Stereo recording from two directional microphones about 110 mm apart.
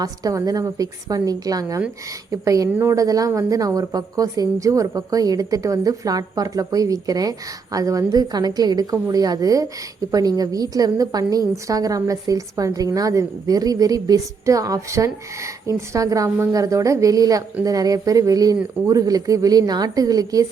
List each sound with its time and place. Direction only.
0.0 s a woman's voice: 35° right (ahead or behind)